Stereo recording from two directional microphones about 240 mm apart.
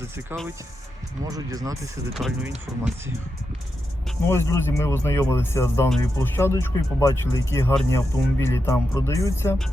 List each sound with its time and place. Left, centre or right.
1.2 s speech: centre
2.1 s speech: centre
4.3 s speech: centre